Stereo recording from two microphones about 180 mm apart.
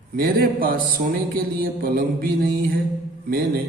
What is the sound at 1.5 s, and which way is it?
Mantra, 55° right (ahead or behind).